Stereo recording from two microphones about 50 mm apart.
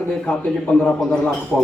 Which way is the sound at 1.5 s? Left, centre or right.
Centre.